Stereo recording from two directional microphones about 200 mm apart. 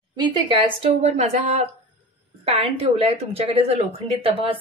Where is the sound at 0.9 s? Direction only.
35° right (ahead or behind).